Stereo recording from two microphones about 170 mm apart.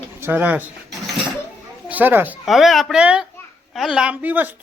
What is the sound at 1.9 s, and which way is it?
Speech, 10° right (ahead or behind).